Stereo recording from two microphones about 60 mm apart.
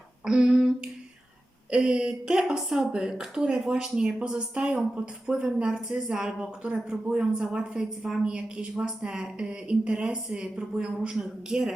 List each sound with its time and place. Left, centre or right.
0.3 s humming: centre
1.7 s a woman's voice: centre